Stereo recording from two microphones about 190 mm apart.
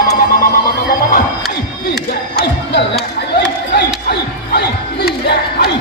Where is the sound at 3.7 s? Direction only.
60° left (ahead or behind).